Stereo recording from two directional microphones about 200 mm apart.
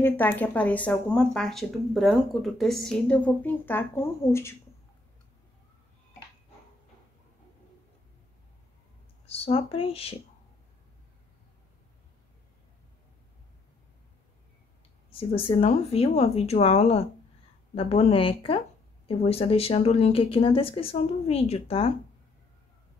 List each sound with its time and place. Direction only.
0.0 s speech: 10° left (ahead or behind)
9.2 s speech: 30° left (ahead or behind)
15.0 s speech: 25° left (ahead or behind)